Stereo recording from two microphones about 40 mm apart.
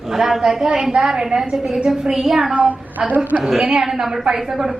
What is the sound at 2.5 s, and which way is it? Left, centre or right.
Speech, right.